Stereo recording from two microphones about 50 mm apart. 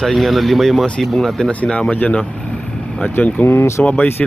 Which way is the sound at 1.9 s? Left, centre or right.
Left.